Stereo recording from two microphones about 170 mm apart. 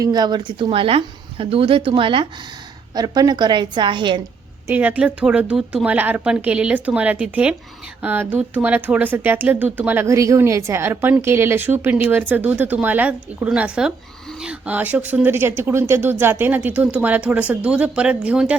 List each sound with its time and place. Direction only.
0.0 s a woman's voice: 25° right (ahead or behind)
4.6 s speech: 10° right (ahead or behind)